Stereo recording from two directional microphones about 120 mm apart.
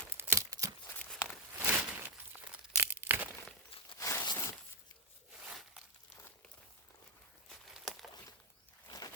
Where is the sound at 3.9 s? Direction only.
25° left (ahead or behind).